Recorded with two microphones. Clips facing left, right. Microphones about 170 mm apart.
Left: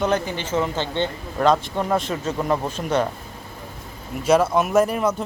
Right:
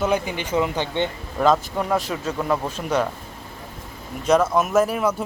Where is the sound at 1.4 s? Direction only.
Centre (ahead or behind).